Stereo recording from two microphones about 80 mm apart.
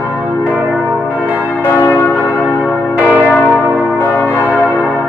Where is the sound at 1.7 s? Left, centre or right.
Left.